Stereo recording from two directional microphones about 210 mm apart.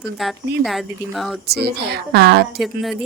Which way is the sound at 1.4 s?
50° right (ahead or behind).